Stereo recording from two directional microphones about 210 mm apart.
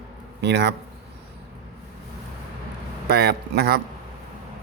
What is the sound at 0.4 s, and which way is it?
Speech, 55° right (ahead or behind).